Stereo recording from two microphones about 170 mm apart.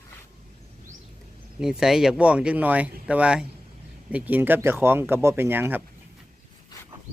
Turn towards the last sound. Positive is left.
turn(degrees=-10)  # may be behind; listen again after turning